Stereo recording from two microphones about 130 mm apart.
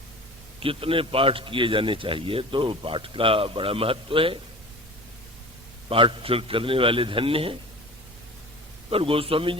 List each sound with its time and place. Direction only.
0.6 s a man's voice: 45° right (ahead or behind)
5.9 s a man's voice: 45° right (ahead or behind)
8.9 s a man's voice: 45° right (ahead or behind)